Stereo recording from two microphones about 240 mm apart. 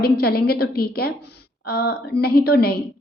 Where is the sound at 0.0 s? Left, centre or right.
Left.